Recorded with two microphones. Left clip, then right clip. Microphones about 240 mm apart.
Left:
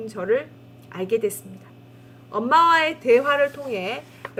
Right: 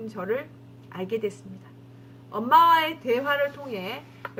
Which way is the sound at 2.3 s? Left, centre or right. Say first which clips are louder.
Left 1 dB; left.